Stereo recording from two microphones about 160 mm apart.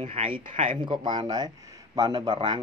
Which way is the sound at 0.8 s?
30° right (ahead or behind).